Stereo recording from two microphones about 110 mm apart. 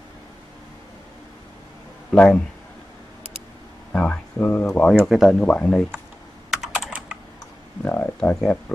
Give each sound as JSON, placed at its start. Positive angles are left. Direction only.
{"t": 2.0, "sound": "speech", "side_deg": 10}
{"t": 3.9, "sound": "a sound", "side_deg": 10}
{"t": 4.7, "sound": "speech", "side_deg": 10}
{"t": 5.4, "sound": "speech", "side_deg": 10}
{"t": 6.5, "sound": "computer keyboard", "side_deg": -5}
{"t": 7.8, "sound": "speech", "side_deg": 15}